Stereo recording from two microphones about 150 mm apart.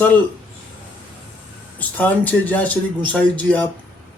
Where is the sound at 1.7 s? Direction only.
10° left (ahead or behind).